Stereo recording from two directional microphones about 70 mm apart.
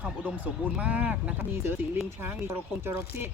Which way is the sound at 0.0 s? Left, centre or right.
Right.